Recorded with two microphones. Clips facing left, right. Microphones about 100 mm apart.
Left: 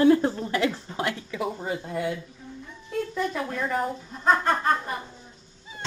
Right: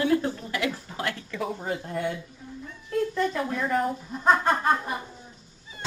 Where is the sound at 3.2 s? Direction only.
Centre (ahead or behind).